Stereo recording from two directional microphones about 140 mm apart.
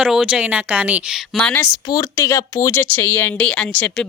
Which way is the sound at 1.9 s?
20° left (ahead or behind).